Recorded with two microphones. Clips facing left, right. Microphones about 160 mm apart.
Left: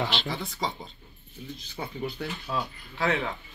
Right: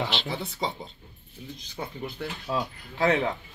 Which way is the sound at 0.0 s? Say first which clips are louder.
Even; 20° right (ahead or behind).